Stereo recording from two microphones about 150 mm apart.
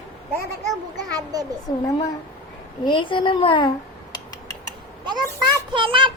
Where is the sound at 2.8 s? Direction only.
35° left (ahead or behind).